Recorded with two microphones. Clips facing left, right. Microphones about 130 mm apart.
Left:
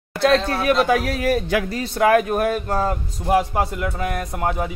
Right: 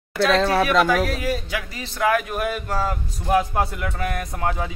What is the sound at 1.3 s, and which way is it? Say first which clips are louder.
Speech: left 6 dB; 60° left (ahead or behind).